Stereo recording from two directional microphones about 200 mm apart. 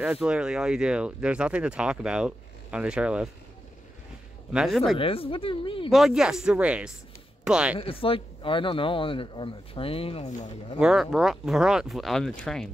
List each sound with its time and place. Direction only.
0.0 s speech: 5° right (ahead or behind)
4.5 s speech: centre (ahead or behind)
4.9 s speech: 25° left (ahead or behind)
5.9 s speech: centre (ahead or behind)
7.8 s speech: 25° left (ahead or behind)
10.8 s speech: centre (ahead or behind)